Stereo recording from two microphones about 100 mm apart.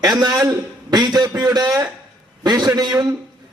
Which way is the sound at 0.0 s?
40° right (ahead or behind).